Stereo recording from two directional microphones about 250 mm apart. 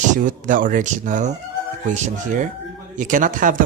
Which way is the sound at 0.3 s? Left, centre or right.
Right.